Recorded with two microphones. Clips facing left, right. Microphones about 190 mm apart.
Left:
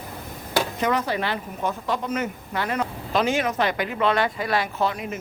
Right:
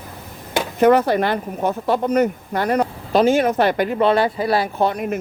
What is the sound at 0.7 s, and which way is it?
Speech, 55° right (ahead or behind).